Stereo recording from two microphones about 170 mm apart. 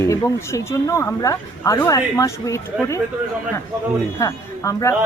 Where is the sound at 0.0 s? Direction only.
20° left (ahead or behind).